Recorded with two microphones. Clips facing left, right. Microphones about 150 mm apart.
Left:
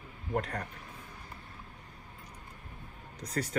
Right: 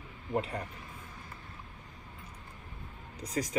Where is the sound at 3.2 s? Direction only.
10° right (ahead or behind).